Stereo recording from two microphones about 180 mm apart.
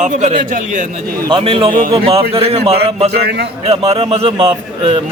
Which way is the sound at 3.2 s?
65° right (ahead or behind).